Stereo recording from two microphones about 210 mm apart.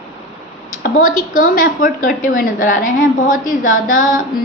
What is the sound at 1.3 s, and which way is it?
A woman's voice, 40° left (ahead or behind).